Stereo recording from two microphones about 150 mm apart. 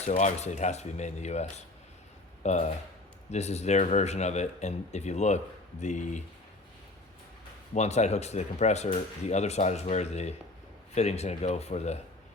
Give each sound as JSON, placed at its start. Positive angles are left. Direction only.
{"t": 0.0, "sound": "speech", "side_deg": 50}
{"t": 7.7, "sound": "speech", "side_deg": 50}